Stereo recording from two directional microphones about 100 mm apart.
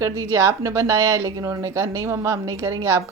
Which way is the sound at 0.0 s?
30° right (ahead or behind).